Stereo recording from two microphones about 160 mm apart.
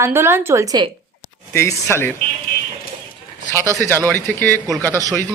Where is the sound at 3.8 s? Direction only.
10° left (ahead or behind).